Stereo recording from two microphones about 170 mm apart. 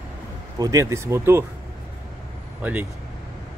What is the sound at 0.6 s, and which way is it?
Speech, 20° right (ahead or behind).